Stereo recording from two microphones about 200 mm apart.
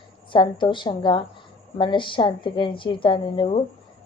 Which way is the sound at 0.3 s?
25° left (ahead or behind).